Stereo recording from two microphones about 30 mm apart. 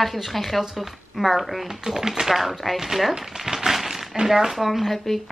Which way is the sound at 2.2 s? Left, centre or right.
Centre.